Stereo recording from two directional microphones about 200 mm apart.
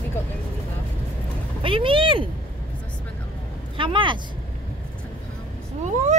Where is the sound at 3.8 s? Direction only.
25° right (ahead or behind).